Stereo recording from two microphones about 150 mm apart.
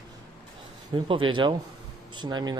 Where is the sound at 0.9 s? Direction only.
35° right (ahead or behind).